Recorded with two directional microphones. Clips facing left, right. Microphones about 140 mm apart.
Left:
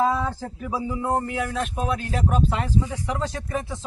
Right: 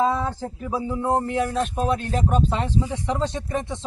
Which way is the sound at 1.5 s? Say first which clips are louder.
Right 3 dB; 5° left (ahead or behind).